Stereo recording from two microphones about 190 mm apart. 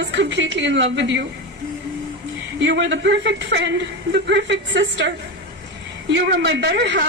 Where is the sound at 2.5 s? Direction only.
65° right (ahead or behind).